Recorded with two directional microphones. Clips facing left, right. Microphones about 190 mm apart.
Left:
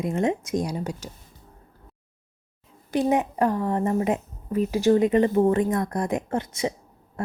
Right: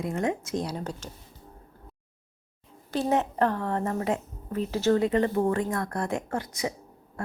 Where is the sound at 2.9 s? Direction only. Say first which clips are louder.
Left 3 dB; 15° left (ahead or behind).